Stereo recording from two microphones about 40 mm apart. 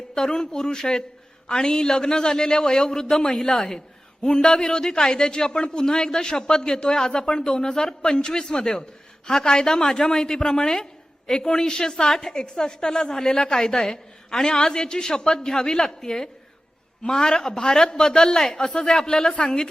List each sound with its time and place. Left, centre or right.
0.1 s a woman's voice: centre